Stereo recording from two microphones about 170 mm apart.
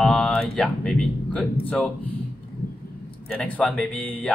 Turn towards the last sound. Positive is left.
turn(degrees=10)  # may be behind; listen again after turning